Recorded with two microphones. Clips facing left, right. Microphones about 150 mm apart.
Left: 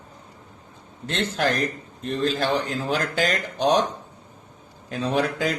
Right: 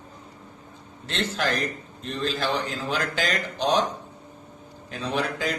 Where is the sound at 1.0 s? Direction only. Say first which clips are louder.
Left 3 dB; 50° left (ahead or behind).